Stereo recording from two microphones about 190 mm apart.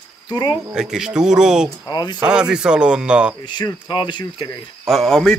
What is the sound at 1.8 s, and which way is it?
Speech, 20° left (ahead or behind).